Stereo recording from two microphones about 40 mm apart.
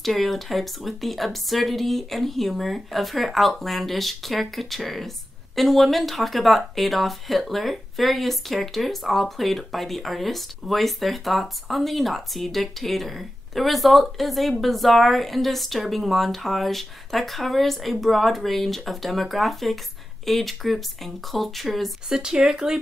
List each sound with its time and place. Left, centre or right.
0.0 s speech: centre
22.1 s speech: centre